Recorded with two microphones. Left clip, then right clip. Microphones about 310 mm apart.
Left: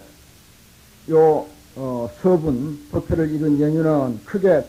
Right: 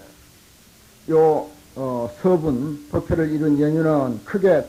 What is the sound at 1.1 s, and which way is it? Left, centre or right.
Speech, left.